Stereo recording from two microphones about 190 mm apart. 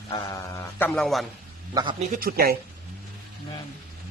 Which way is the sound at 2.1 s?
50° right (ahead or behind).